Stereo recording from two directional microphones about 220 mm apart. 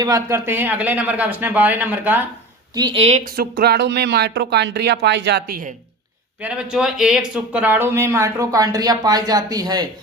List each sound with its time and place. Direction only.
0.0 s speech: 15° right (ahead or behind)
2.7 s speech: 20° right (ahead or behind); by 5.7 s 40° right (ahead or behind)
6.4 s speech: 5° right (ahead or behind)